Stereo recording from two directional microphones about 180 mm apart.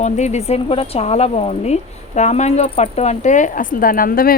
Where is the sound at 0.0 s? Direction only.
40° left (ahead or behind).